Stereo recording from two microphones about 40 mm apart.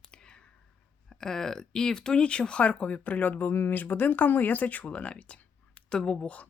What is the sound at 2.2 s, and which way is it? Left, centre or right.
Speech, left.